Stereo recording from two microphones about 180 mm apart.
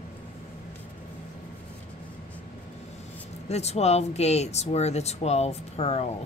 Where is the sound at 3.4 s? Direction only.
35° left (ahead or behind).